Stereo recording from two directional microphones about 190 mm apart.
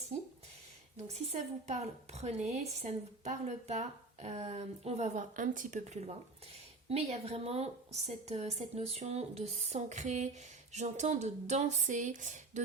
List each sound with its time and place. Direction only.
1.3 s a woman's voice: 35° right (ahead or behind)